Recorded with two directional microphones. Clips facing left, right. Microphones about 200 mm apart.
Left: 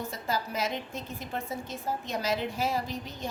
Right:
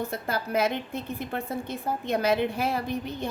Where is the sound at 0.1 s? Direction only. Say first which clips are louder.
Right 4 dB; 60° right (ahead or behind).